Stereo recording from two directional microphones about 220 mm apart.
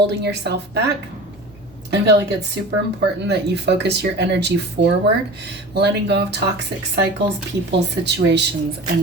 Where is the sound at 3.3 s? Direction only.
50° right (ahead or behind).